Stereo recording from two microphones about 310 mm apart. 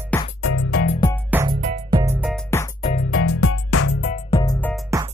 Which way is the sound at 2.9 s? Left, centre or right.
Left.